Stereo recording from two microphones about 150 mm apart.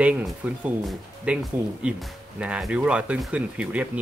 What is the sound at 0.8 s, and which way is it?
Speech, 5° right (ahead or behind).